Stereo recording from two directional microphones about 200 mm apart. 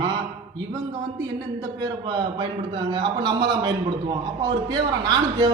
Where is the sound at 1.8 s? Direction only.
20° right (ahead or behind).